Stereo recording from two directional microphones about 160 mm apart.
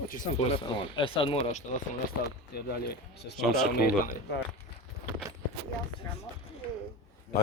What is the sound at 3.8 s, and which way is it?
Speech, 80° left.